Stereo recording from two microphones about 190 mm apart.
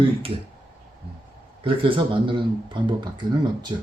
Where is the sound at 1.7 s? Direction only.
25° right (ahead or behind).